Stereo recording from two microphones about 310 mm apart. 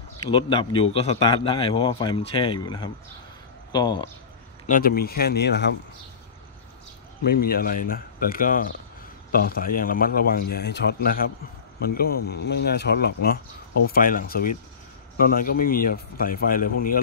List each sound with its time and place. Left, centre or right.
0.3 s speech: centre
4.6 s speech: left
7.2 s speech: left